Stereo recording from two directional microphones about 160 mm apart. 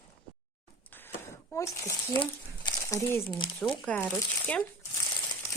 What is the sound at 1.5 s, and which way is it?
Speech, 20° left (ahead or behind).